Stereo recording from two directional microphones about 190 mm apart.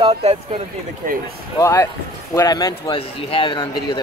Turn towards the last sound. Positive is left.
turn(degrees=25)  # may be behind; listen again after turning